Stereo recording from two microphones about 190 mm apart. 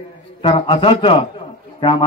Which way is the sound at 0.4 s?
25° left (ahead or behind).